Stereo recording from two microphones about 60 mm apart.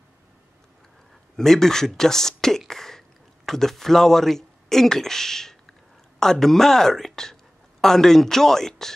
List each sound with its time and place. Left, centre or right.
1.3 s speech: centre
2.7 s sneeze: centre
3.4 s speech: centre